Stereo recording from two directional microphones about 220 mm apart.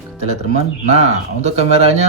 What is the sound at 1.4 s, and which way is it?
Speech, 30° right (ahead or behind).